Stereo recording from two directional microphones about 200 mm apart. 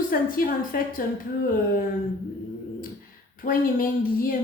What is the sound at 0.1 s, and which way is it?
Speech, 45° left (ahead or behind).